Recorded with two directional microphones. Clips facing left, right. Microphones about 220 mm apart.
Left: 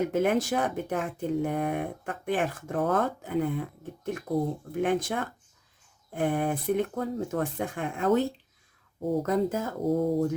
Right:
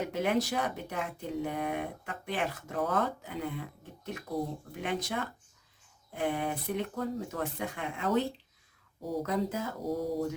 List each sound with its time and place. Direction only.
0.1 s speech: 50° left (ahead or behind)